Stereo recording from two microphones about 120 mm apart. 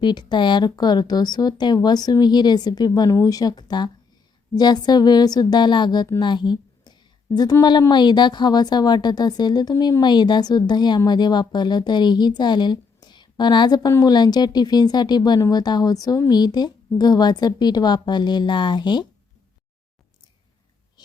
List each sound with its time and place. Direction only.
0.0 s a woman's voice: 40° left (ahead or behind)